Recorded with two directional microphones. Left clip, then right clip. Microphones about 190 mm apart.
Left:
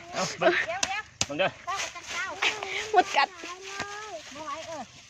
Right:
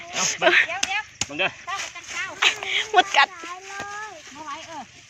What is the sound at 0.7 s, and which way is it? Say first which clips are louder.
Chop: right 5 dB; 60° left (ahead or behind).